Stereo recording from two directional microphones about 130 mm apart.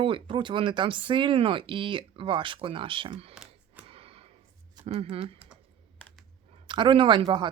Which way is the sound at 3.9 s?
45° right (ahead or behind).